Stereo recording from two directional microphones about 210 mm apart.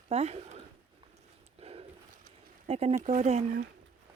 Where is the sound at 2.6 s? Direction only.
30° right (ahead or behind).